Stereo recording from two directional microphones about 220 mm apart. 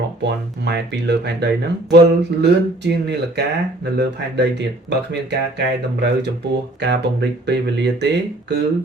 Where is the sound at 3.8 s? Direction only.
50° right (ahead or behind).